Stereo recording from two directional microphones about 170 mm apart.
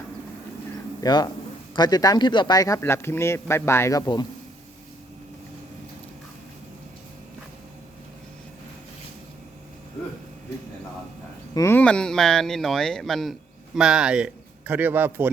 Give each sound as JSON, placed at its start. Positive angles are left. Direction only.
{"t": 1.0, "sound": "speech", "side_deg": 25}
{"t": 11.5, "sound": "a man's voice", "side_deg": 15}